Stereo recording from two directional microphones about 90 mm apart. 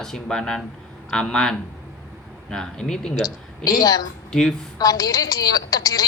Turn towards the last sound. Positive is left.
turn(degrees=45)  # may be behind; listen again after turning